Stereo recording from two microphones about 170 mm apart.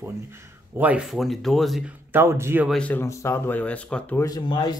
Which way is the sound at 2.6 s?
5° left (ahead or behind).